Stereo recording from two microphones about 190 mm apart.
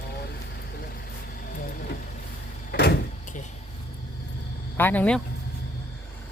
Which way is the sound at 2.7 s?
55° left (ahead or behind).